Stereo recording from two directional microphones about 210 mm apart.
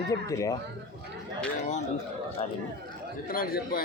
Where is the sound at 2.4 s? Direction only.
35° left (ahead or behind).